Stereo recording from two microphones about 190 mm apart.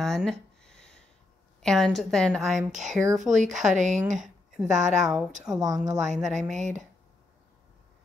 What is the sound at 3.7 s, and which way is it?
Speech, 40° right (ahead or behind).